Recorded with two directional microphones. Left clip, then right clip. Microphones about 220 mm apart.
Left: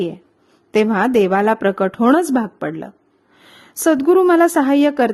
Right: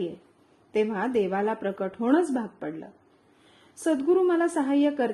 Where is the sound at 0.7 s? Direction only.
45° left (ahead or behind).